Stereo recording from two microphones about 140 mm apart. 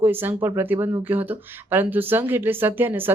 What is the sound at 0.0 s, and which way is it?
Speech, 15° right (ahead or behind).